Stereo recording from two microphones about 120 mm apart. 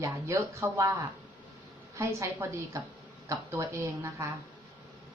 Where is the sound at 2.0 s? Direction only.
25° right (ahead or behind).